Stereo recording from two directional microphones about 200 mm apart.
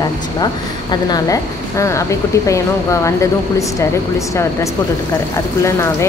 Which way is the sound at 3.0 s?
15° left (ahead or behind).